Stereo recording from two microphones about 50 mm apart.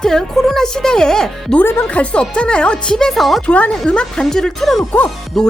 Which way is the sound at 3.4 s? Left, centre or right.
Left.